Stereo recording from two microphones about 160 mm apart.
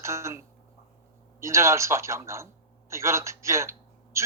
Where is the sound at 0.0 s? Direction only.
20° right (ahead or behind).